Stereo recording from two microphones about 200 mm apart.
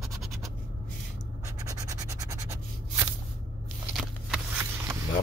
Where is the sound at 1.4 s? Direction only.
15° right (ahead or behind).